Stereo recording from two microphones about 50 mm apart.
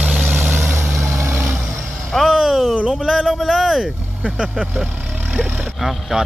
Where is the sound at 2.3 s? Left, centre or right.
Centre.